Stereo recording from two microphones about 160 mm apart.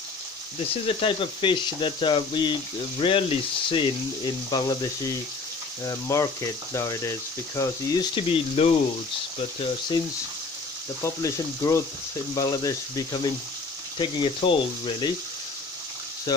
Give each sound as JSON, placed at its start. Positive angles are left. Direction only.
{"t": 0.8, "sound": "speech", "side_deg": 35}
{"t": 11.0, "sound": "speech", "side_deg": 20}
{"t": 16.3, "sound": "frying", "side_deg": 25}